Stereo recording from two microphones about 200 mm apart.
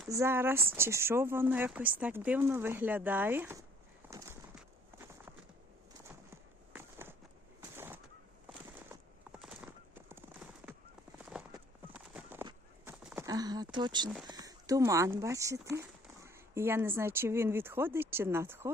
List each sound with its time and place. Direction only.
0.1 s speech: 15° right (ahead or behind)
4.1 s clip-clop: 15° right (ahead or behind)
6.1 s a sound: 10° right (ahead or behind)
7.8 s bird: 10° right (ahead or behind)
8.4 s clip-clop: 5° right (ahead or behind)
12.8 s a sound: 10° right (ahead or behind)
14.3 s speech: 20° right (ahead or behind)